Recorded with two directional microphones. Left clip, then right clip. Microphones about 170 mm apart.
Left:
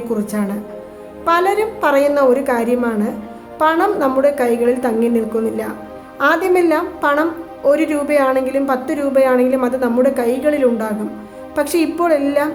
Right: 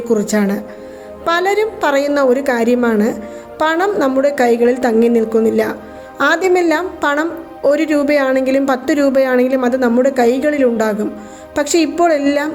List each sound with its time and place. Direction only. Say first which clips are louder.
0.1 s a woman's voice: right 8 dB; 30° right (ahead or behind)